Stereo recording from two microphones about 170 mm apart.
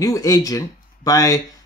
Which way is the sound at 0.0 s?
20° left (ahead or behind).